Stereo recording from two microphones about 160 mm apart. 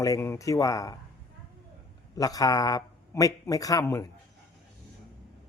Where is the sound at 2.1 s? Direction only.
20° left (ahead or behind).